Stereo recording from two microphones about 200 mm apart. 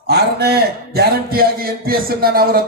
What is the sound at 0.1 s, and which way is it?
A man's voice, 50° right (ahead or behind).